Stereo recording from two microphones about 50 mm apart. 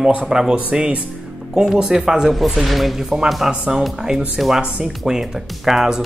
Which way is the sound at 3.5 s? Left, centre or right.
Centre.